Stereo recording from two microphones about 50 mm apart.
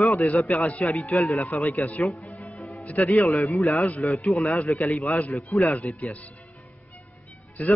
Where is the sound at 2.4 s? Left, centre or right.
Left.